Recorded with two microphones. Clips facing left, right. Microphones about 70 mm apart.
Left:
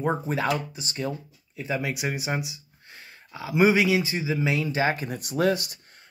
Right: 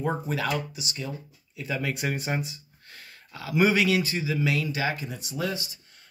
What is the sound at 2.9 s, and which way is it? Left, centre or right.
Speech, centre.